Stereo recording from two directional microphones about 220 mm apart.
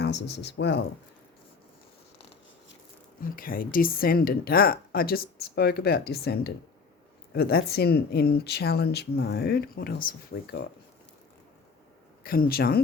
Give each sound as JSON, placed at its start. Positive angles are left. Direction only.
{"t": 0.0, "sound": "speech", "side_deg": 50}
{"t": 3.2, "sound": "speech", "side_deg": 40}
{"t": 12.2, "sound": "speech", "side_deg": 40}